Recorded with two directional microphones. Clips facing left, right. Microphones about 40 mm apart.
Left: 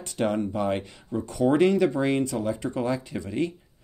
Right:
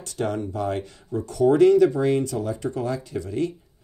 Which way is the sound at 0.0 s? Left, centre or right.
Left.